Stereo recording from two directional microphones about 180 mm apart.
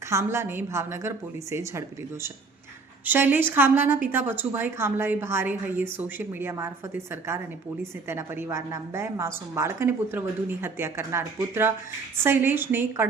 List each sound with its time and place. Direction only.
0.1 s a woman's voice: 15° right (ahead or behind)
3.0 s a woman's voice: 10° right (ahead or behind)